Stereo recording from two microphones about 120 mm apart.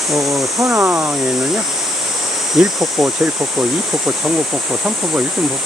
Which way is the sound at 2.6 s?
5° right (ahead or behind).